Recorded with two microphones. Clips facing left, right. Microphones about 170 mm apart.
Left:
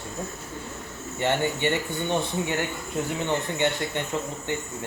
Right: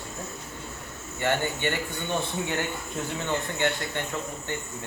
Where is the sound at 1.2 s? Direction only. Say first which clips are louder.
Left 2 dB; 20° left (ahead or behind).